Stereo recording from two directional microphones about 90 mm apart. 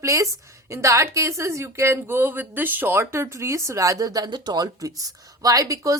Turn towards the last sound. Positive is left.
turn(degrees=-40)  # may be behind; listen again after turning